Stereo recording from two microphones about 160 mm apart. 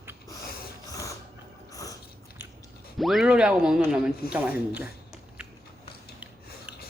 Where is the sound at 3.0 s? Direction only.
Centre (ahead or behind).